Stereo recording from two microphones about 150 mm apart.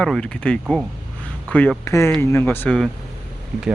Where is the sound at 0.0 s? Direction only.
5° left (ahead or behind).